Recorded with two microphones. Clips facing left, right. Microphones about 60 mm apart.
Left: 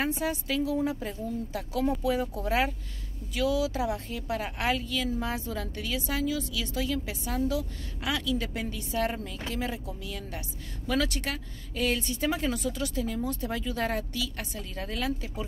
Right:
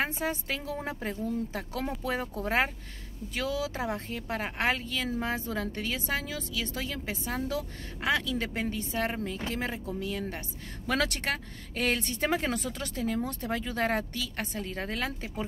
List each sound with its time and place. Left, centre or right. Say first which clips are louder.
0.0 s a woman's voice: left 1 dB; right
9.6 s a woman's voice: right 1 dB; right
10.9 s speech: even; right